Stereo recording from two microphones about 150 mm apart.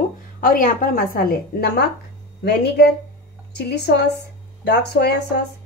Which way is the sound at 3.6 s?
90° left.